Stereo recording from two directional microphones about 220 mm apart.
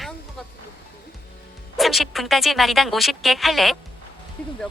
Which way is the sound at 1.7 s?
Centre (ahead or behind).